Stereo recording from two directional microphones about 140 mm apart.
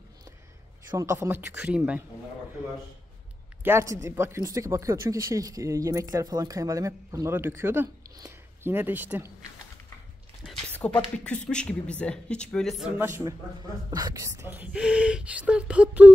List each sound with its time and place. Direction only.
0.9 s speech: 20° right (ahead or behind)
3.6 s speech: 20° right (ahead or behind)
10.8 s speech: 10° left (ahead or behind)
12.9 s speech: 20° right (ahead or behind)